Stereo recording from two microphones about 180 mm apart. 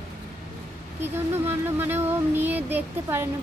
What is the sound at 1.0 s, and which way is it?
Speech, 10° right (ahead or behind).